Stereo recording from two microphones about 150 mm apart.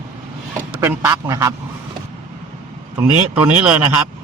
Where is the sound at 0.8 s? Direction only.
15° right (ahead or behind).